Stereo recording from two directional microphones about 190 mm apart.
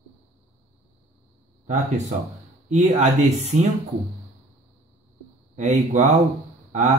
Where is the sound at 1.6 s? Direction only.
35° right (ahead or behind).